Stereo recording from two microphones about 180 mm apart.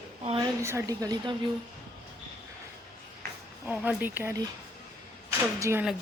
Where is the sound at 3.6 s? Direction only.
10° right (ahead or behind).